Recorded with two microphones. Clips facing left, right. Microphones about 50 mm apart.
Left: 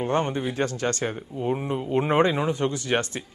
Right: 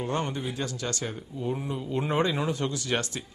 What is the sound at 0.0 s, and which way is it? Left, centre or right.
Speech, left.